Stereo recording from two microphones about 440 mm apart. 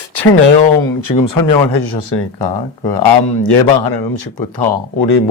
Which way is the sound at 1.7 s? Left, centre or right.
Left.